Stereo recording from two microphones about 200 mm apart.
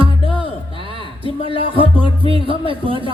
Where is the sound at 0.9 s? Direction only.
25° right (ahead or behind).